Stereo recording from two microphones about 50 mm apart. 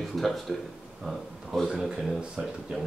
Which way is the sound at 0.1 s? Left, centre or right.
Centre.